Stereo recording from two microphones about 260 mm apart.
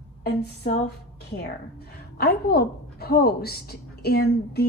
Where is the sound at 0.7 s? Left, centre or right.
Left.